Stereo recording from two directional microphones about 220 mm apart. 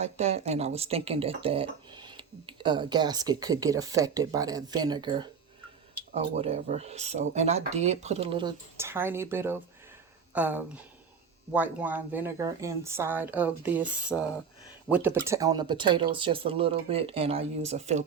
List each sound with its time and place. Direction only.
0.0 s a woman's voice: 30° right (ahead or behind); by 13.8 s 10° right (ahead or behind)
14.1 s speech: 10° left (ahead or behind)
14.8 s speech: 5° right (ahead or behind); by 18.0 s 30° right (ahead or behind)